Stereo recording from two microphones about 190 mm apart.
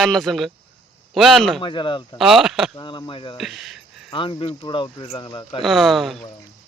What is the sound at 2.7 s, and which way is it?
Speech, 25° left (ahead or behind).